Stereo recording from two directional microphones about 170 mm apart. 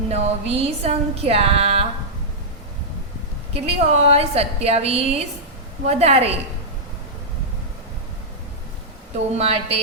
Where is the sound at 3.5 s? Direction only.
40° right (ahead or behind).